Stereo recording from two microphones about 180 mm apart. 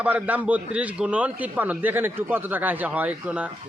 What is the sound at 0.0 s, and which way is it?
A man's voice, 10° right (ahead or behind).